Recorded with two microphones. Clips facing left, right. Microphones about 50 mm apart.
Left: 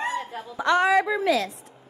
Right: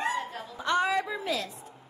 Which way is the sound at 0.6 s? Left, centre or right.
Left.